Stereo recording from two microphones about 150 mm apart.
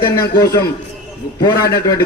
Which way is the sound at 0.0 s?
20° left (ahead or behind).